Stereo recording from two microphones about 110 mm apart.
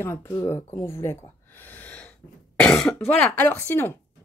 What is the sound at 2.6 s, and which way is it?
Speech, 5° left (ahead or behind).